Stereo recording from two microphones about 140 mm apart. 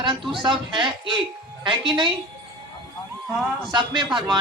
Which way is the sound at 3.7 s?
35° right (ahead or behind).